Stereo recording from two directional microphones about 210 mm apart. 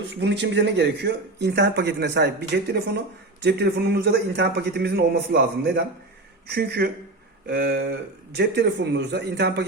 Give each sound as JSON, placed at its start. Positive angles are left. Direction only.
{"t": 0.1, "sound": "a man's voice", "side_deg": -55}